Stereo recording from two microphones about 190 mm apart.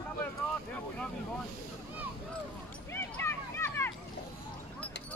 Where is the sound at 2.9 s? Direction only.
15° left (ahead or behind).